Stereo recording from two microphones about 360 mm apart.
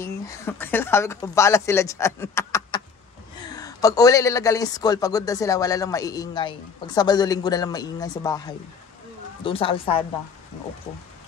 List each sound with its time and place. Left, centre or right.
0.0 s a man's voice: centre